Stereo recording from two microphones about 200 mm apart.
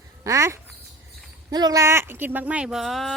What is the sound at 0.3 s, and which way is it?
Speech, 15° right (ahead or behind).